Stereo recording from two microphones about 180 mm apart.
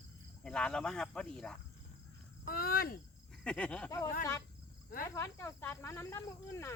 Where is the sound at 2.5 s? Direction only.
55° left (ahead or behind).